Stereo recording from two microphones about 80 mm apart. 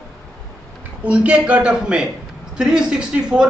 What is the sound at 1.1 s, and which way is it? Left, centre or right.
Speech, centre.